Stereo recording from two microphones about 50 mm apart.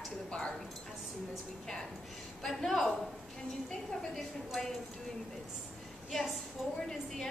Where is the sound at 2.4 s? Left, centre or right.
Centre.